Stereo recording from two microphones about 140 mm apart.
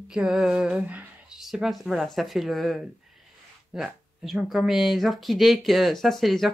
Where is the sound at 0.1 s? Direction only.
Centre (ahead or behind).